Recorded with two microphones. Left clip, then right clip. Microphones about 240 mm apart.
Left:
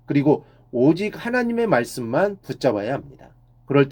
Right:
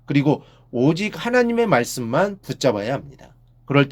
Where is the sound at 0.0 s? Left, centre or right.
Right.